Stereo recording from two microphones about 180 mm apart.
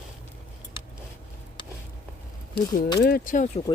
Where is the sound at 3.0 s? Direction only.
55° left (ahead or behind).